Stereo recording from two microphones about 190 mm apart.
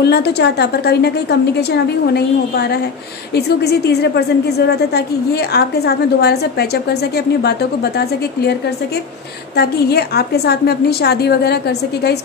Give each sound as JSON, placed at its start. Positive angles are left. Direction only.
{"t": 0.0, "sound": "a woman's voice", "side_deg": 60}
{"t": 9.6, "sound": "a woman's voice", "side_deg": 55}